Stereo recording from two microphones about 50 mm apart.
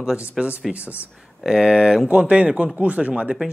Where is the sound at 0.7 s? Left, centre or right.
Right.